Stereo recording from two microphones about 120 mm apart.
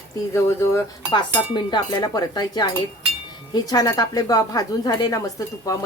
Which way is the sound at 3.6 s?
30° left (ahead or behind).